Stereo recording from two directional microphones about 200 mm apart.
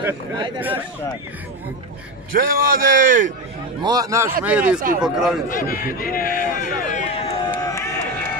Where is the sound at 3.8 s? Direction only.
20° right (ahead or behind); by 5.4 s centre (ahead or behind).